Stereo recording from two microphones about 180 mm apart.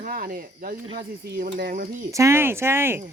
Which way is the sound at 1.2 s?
60° right (ahead or behind).